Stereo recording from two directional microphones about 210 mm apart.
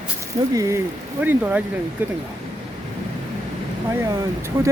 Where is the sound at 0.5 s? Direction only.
15° right (ahead or behind).